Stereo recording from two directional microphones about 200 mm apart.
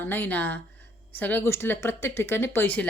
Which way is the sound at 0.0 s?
10° left (ahead or behind).